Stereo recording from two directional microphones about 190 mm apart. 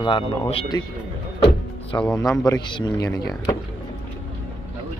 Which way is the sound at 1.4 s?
25° left (ahead or behind).